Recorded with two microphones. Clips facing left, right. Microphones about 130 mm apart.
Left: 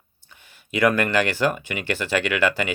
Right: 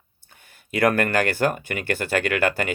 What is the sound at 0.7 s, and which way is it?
Speech, 50° right (ahead or behind).